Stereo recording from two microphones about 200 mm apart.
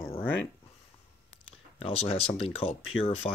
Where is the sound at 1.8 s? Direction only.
30° left (ahead or behind).